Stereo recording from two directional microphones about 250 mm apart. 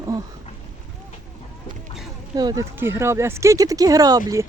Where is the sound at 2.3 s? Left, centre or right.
Centre.